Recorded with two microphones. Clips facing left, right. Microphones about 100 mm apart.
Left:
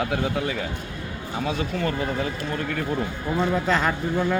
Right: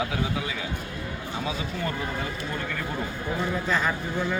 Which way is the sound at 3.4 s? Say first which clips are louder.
Left 5 dB; 65° left (ahead or behind).